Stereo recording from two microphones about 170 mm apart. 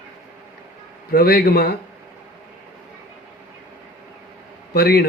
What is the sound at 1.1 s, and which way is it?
Speech, 65° left (ahead or behind).